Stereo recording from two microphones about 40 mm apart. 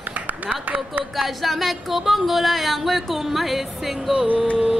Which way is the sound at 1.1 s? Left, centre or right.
Centre.